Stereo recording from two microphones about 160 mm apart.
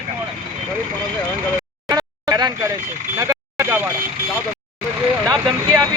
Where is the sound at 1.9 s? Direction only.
25° right (ahead or behind).